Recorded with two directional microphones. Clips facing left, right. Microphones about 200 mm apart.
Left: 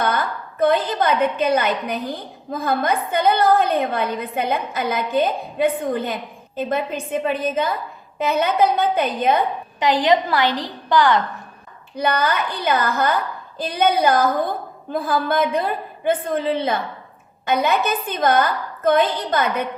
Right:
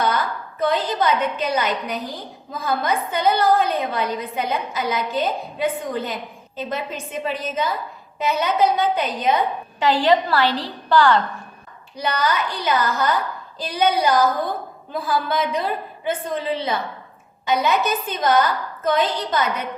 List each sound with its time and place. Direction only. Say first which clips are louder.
0.6 s a woman's voice: left 3 dB; 55° left (ahead or behind)
9.8 s a woman's voice: even; 15° left (ahead or behind)
11.9 s a woman's voice: left 2 dB; 55° left (ahead or behind)
15.3 s a woman's voice: left 3 dB; 55° left (ahead or behind)